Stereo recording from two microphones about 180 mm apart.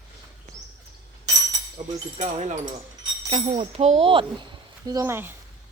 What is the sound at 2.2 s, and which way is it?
Speech, 40° right (ahead or behind).